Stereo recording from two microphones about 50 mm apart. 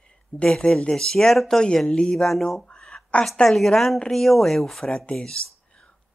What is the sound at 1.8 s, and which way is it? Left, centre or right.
Speech, centre.